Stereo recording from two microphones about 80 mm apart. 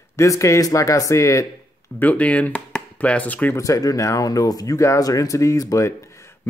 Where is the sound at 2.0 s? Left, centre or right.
Centre.